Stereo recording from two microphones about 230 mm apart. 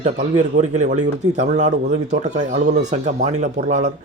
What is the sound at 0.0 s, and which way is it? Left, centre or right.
Speech, right.